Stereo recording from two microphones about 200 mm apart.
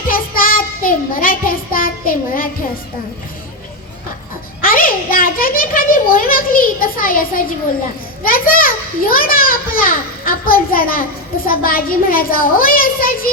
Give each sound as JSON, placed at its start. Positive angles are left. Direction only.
{"t": 0.1, "sound": "child singing", "side_deg": 45}
{"t": 4.6, "sound": "a sound", "side_deg": 45}
{"t": 8.2, "sound": "a child's voice", "side_deg": 45}